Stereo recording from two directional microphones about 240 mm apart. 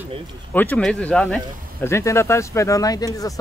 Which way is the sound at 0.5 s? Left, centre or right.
Centre.